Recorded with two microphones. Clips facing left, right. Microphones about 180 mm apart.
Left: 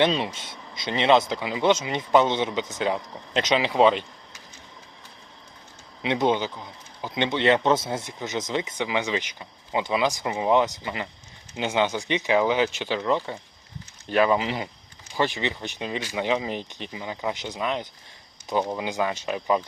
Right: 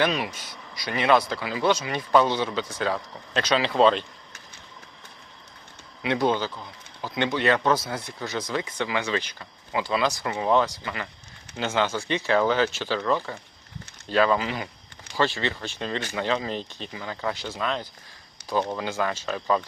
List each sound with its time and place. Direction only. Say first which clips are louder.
0.0 s speech: left 2 dB; 25° left (ahead or behind)
6.0 s speech: left 1 dB; 20° left (ahead or behind)